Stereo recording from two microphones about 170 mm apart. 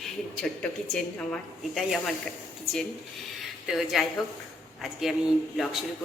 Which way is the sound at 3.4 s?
Centre (ahead or behind).